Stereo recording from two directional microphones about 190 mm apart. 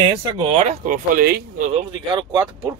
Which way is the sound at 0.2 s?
25° right (ahead or behind).